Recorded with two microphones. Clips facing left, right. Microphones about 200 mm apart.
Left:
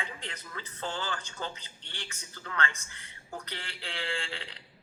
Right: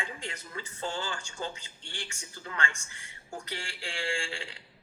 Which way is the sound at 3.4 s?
10° right (ahead or behind).